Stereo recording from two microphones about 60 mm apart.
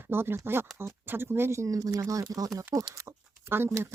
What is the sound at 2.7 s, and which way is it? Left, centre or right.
Speech, right.